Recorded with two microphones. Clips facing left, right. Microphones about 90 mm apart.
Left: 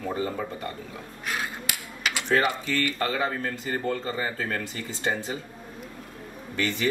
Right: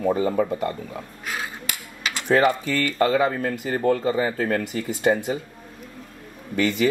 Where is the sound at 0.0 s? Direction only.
20° right (ahead or behind).